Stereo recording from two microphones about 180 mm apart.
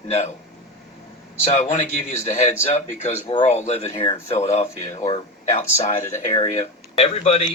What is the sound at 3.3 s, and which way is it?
A man's voice, 35° left (ahead or behind).